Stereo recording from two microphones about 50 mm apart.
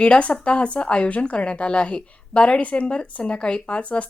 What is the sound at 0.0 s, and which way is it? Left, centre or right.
Speech, left.